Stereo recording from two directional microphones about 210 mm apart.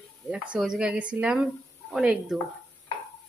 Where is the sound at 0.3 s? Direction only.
5° right (ahead or behind).